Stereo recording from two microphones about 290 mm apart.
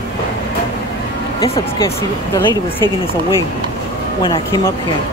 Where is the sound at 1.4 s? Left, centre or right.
Centre.